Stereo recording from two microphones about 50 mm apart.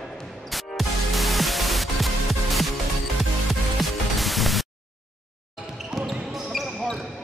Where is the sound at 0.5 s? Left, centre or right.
Centre.